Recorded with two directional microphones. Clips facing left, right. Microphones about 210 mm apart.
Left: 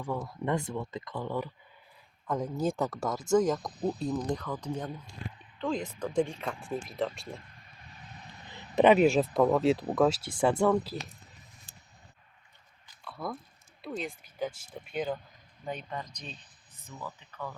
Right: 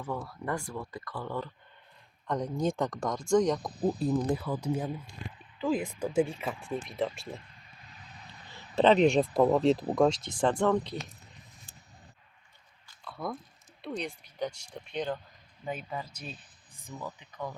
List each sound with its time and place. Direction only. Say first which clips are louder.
0.0 s speech: left 2 dB; 15° left (ahead or behind)
2.2 s speech: even; 5° left (ahead or behind)
8.4 s speech: left 2 dB; 15° left (ahead or behind)
13.1 s chewing: right 1 dB; centre (ahead or behind)
13.8 s speech: right 1 dB; centre (ahead or behind); by 17.5 s 15° right (ahead or behind)